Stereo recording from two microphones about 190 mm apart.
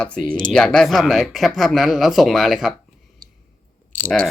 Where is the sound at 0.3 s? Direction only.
45° right (ahead or behind).